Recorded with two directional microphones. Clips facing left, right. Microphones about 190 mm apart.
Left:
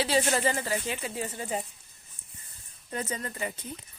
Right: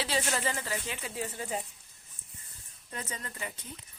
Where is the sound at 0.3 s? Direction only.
35° left (ahead or behind).